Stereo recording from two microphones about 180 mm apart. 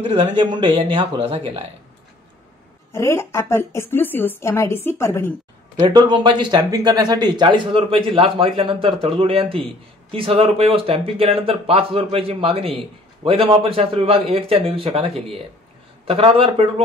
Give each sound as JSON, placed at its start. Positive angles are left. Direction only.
{"t": 0.0, "sound": "speech", "side_deg": -30}
{"t": 2.9, "sound": "a woman's voice", "side_deg": 15}
{"t": 5.8, "sound": "speech", "side_deg": -25}
{"t": 16.1, "sound": "speech", "side_deg": -30}